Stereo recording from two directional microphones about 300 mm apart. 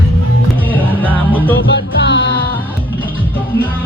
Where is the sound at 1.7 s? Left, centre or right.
Left.